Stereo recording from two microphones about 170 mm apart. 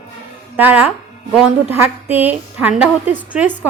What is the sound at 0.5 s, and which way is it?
A woman's voice, 10° right (ahead or behind).